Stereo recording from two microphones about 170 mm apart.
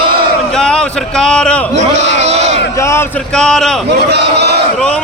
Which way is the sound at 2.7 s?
15° left (ahead or behind).